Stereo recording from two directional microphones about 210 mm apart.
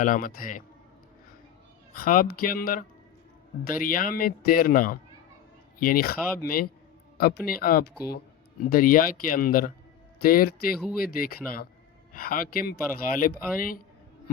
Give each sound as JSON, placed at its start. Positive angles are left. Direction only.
{"t": 0.0, "sound": "speech", "side_deg": 40}
{"t": 2.0, "sound": "speech", "side_deg": 45}